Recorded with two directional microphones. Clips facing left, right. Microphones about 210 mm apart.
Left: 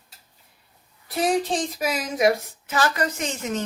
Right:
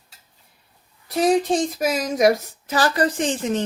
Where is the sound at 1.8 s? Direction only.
45° right (ahead or behind).